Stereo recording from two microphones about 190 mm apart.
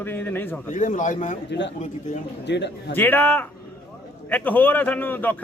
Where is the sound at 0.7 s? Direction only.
40° left (ahead or behind).